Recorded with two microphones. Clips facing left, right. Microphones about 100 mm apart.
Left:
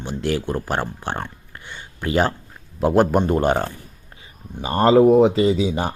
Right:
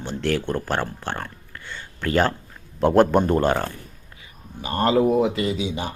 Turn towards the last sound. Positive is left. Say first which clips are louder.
# left 6 dB
turn(degrees=45)  # may be behind; listen again after turning